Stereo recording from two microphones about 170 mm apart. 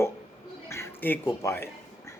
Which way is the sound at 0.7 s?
15° left (ahead or behind).